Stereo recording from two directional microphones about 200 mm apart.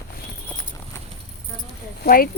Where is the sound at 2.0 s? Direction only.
45° left (ahead or behind).